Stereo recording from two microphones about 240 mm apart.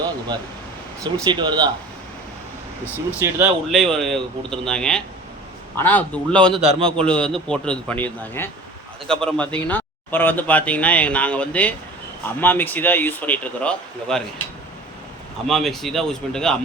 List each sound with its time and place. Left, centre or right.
1.3 s speech: centre
3.2 s a man's voice: centre
6.5 s a man's voice: right
7.0 s a man's voice: centre
15.4 s a man's voice: centre